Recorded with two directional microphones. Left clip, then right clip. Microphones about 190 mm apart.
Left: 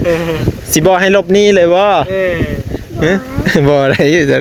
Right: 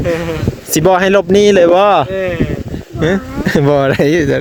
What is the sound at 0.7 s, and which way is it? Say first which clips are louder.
Speech: left 1 dB; 30° right (ahead or behind).